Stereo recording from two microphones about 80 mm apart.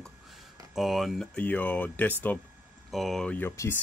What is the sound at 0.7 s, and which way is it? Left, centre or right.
Speech, centre.